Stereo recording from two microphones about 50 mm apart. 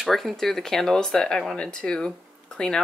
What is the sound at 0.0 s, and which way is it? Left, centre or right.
Speech, centre.